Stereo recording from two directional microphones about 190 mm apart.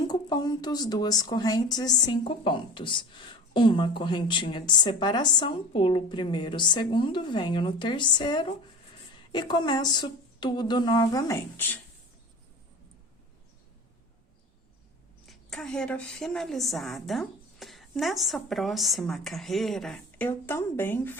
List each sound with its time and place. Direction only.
0.1 s a woman's voice: 20° left (ahead or behind)
15.3 s a woman's voice: 5° left (ahead or behind)